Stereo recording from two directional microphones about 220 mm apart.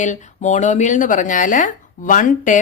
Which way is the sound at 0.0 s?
35° left (ahead or behind).